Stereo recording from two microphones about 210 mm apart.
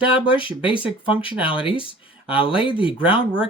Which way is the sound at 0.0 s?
5° right (ahead or behind).